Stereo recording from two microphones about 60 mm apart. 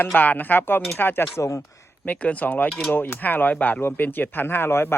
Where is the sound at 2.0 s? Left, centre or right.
Left.